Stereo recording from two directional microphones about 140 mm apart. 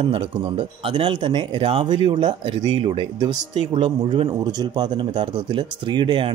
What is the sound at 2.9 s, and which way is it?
Speech, 45° right (ahead or behind).